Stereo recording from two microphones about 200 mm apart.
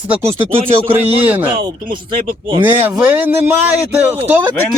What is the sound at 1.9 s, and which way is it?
Speech, 25° right (ahead or behind).